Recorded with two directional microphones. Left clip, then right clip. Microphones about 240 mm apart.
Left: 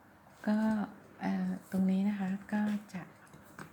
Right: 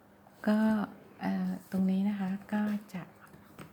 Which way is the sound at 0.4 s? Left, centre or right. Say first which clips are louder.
Right 3 dB; centre.